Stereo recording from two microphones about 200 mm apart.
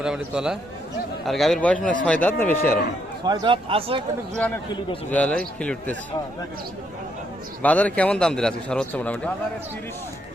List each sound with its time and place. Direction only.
0.0 s a man's voice: 5° right (ahead or behind)
3.2 s speech: 20° right (ahead or behind)
5.0 s a man's voice: 10° left (ahead or behind)
7.6 s a man's voice: 5° left (ahead or behind)